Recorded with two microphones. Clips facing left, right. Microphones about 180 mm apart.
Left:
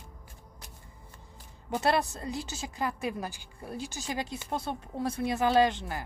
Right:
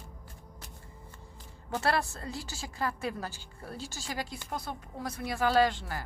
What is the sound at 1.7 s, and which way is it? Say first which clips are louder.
A woman's voice: left 3 dB; 20° left (ahead or behind).